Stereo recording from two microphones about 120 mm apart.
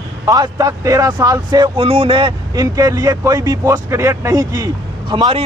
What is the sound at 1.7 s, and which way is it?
Speech, 50° right (ahead or behind).